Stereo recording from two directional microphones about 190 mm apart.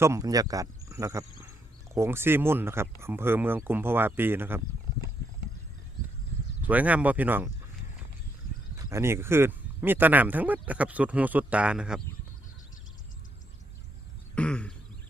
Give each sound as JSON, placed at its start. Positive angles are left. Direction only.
{"t": 0.0, "sound": "speech", "side_deg": -15}
{"t": 6.6, "sound": "speech", "side_deg": -10}
{"t": 8.8, "sound": "speech", "side_deg": -15}
{"t": 14.3, "sound": "a sound", "side_deg": 5}